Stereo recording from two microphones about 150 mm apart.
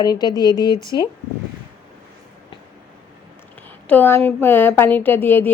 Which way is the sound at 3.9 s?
15° left (ahead or behind).